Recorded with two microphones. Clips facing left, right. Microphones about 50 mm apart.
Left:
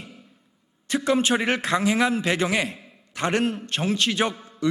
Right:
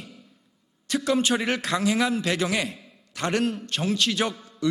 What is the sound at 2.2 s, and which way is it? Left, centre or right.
Speech, left.